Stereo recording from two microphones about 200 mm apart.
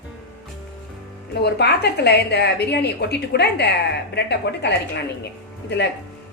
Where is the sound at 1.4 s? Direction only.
55° left (ahead or behind).